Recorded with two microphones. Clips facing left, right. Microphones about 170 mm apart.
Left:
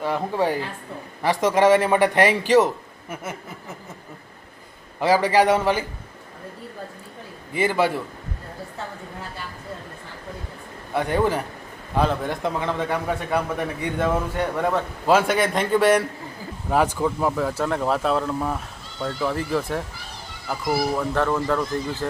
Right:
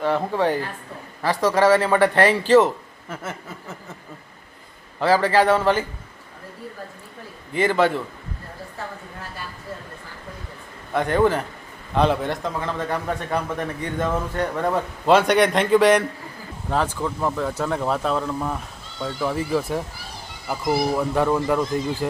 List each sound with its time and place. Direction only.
0.0 s speech: 10° left (ahead or behind)
4.9 s speech: 15° left (ahead or behind)
7.5 s speech: 10° left (ahead or behind)
10.9 s speech: 10° left (ahead or behind)
12.4 s speech: 15° left (ahead or behind); by 19.8 s centre (ahead or behind)
20.5 s speech: 15° right (ahead or behind)